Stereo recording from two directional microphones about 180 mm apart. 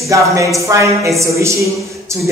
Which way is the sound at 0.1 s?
15° right (ahead or behind).